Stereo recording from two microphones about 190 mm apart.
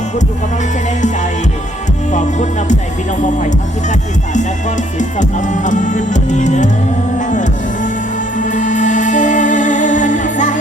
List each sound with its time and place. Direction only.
2.1 s music: 40° left (ahead or behind)
4.9 s music: 40° left (ahead or behind)